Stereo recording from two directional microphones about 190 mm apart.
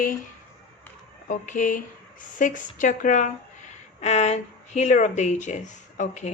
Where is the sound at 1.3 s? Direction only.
45° left (ahead or behind).